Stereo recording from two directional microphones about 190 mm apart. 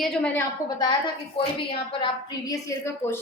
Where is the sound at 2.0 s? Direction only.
20° left (ahead or behind).